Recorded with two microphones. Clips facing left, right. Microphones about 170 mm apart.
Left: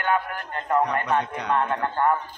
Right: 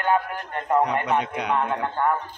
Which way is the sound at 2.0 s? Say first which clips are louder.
Left 1 dB; centre (ahead or behind).